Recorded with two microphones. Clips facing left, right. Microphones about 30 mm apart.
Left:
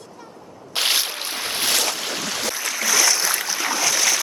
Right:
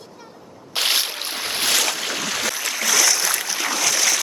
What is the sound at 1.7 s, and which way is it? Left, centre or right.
Boat, right.